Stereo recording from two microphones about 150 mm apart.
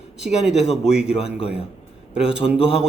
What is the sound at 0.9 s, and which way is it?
Speech, 5° right (ahead or behind).